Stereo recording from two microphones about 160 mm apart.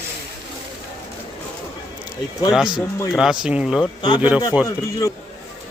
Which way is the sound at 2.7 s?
25° left (ahead or behind).